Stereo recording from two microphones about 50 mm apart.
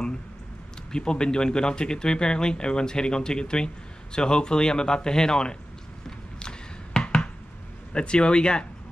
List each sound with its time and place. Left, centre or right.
0.9 s speech: centre
6.0 s a sound: centre
7.9 s speech: centre